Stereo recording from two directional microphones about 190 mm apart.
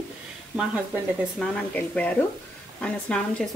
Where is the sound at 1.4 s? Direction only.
Centre (ahead or behind).